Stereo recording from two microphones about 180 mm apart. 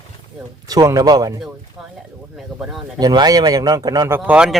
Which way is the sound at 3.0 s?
25° right (ahead or behind).